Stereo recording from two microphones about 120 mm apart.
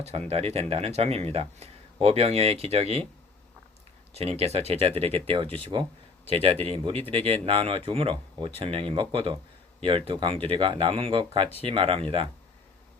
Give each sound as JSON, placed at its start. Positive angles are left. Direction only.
{"t": 0.3, "sound": "speech", "side_deg": -60}
{"t": 4.1, "sound": "speech", "side_deg": -60}